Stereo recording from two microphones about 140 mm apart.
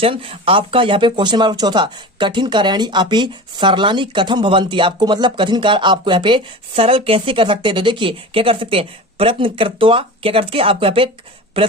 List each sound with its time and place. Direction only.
0.0 s a woman's voice: 40° right (ahead or behind)